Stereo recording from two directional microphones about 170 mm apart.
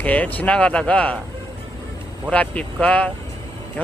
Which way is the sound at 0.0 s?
10° left (ahead or behind).